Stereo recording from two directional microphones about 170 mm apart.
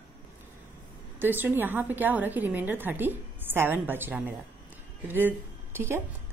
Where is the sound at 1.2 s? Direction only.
10° right (ahead or behind).